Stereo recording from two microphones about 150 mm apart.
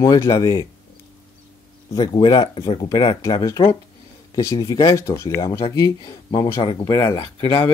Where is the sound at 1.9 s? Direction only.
35° left (ahead or behind).